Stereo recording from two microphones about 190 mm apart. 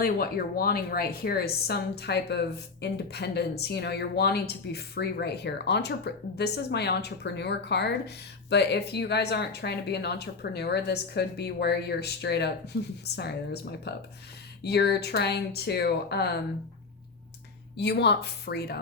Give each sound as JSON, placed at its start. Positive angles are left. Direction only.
{"t": 0.0, "sound": "speech", "side_deg": 50}
{"t": 17.7, "sound": "speech", "side_deg": 60}